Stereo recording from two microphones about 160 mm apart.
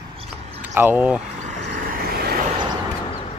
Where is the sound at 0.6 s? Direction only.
10° right (ahead or behind).